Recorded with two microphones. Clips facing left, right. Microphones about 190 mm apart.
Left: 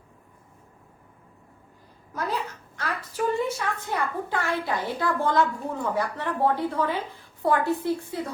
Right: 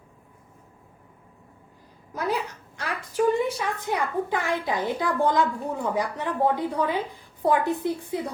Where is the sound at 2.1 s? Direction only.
10° right (ahead or behind).